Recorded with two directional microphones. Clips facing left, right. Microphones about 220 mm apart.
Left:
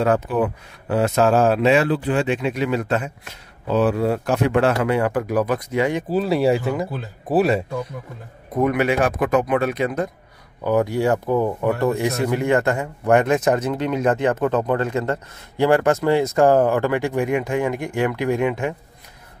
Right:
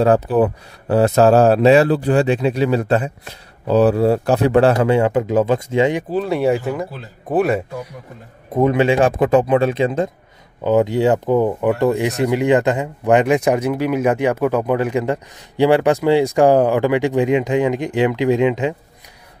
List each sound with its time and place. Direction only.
0.0 s speech: 35° right (ahead or behind)
6.0 s speech: 5° left (ahead or behind)
8.5 s speech: 25° right (ahead or behind)